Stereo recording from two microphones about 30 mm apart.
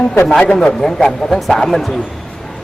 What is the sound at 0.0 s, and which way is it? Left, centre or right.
A man's voice, centre.